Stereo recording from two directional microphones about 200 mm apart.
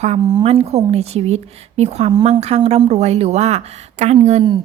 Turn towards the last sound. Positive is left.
turn(degrees=-30)  # may be behind; listen again after turning